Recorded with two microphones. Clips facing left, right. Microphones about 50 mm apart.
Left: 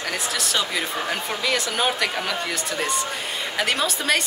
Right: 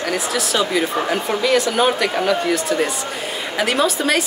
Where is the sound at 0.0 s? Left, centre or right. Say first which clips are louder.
Right 5 dB; centre.